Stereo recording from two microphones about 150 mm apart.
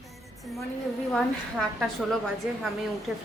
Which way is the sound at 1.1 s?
5° left (ahead or behind).